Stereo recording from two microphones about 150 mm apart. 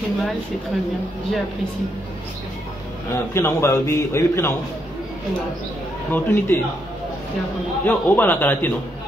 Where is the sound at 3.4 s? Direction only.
15° left (ahead or behind).